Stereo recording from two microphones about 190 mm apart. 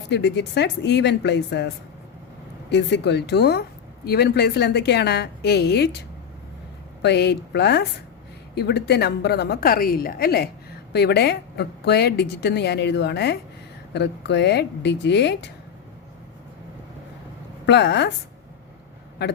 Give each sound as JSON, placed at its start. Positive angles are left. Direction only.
{"t": 0.1, "sound": "a woman's voice", "side_deg": 65}
{"t": 7.0, "sound": "a woman's voice", "side_deg": 60}
{"t": 17.7, "sound": "a woman's voice", "side_deg": 65}